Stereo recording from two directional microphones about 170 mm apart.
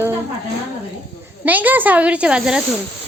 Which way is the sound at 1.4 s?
10° right (ahead or behind).